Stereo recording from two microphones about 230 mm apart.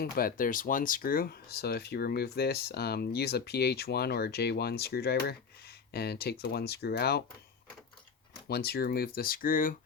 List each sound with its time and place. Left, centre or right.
0.0 s speech: left
8.4 s speech: left